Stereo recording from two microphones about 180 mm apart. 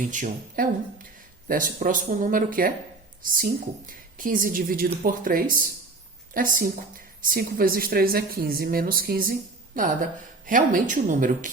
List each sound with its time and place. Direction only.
0.1 s speech: 50° right (ahead or behind)